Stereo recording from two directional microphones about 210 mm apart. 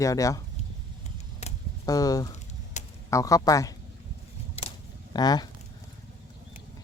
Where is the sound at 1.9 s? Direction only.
15° left (ahead or behind).